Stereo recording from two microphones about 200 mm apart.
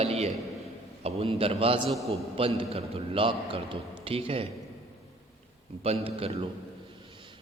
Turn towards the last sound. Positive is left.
turn(degrees=-30)  # may be behind; listen again after turning